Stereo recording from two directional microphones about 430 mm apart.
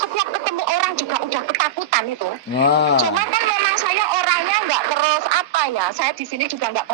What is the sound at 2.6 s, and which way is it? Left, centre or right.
Speech, left.